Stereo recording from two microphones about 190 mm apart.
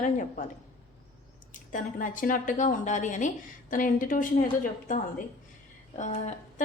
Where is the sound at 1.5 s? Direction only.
45° left (ahead or behind).